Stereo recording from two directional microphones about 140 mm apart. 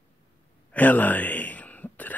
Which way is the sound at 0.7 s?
10° left (ahead or behind).